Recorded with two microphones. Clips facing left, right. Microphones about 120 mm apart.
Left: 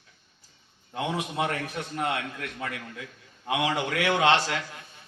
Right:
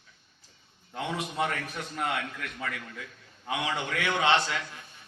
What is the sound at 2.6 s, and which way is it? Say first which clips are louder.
A man's voice: even; 15° left (ahead or behind).